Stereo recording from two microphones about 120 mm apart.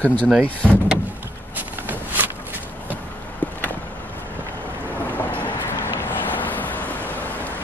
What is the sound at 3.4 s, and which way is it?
Vehicle, 15° left (ahead or behind).